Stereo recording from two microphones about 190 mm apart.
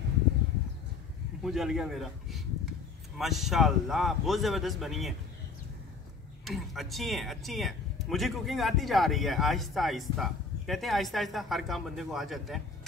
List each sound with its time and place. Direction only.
1.4 s speech: centre (ahead or behind)
6.4 s speech: centre (ahead or behind)